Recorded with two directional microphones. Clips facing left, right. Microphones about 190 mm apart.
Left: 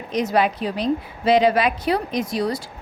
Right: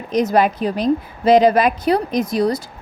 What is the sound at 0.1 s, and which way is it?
A woman's voice, 40° right (ahead or behind).